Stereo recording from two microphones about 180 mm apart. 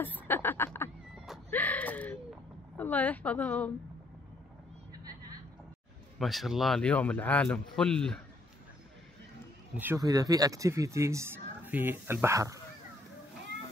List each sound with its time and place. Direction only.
0.0 s a sound: 10° left (ahead or behind)
2.8 s a woman's voice: 10° left (ahead or behind)
4.9 s vehicle: 20° right (ahead or behind)
6.1 s a man's voice: centre (ahead or behind)
9.8 s speech: 15° right (ahead or behind)